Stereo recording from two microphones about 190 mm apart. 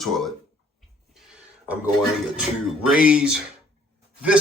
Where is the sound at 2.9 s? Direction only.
5° right (ahead or behind).